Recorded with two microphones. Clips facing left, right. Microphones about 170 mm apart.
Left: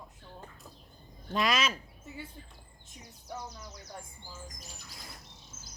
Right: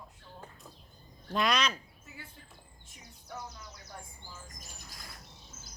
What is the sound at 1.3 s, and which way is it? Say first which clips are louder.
Speech: even; centre (ahead or behind).